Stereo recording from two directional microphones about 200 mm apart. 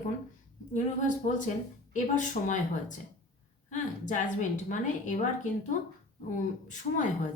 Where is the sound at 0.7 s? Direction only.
40° left (ahead or behind).